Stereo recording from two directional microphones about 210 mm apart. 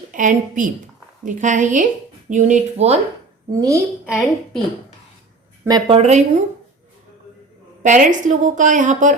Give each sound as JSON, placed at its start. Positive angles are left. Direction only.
{"t": 0.1, "sound": "a woman's voice", "side_deg": -40}
{"t": 3.5, "sound": "a woman's voice", "side_deg": -15}
{"t": 4.0, "sound": "a woman's voice", "side_deg": -5}
{"t": 5.6, "sound": "speech", "side_deg": -20}
{"t": 6.0, "sound": "a woman's voice", "side_deg": -35}
{"t": 7.8, "sound": "a woman's voice", "side_deg": -35}